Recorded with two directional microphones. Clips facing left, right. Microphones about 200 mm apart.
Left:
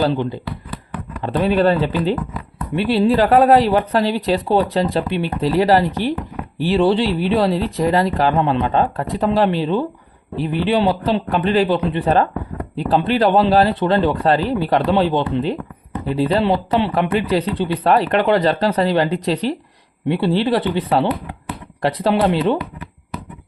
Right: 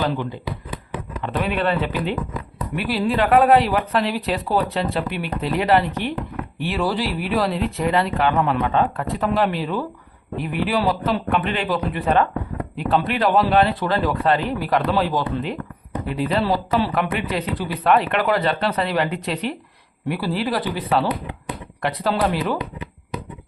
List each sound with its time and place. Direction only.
0.1 s a man's voice: 25° left (ahead or behind)